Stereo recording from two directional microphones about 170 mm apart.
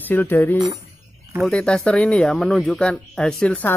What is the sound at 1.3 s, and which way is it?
Speech, centre (ahead or behind).